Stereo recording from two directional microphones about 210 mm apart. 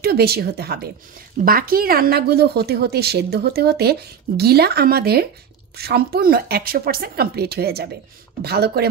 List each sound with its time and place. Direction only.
0.0 s a woman's voice: 50° right (ahead or behind)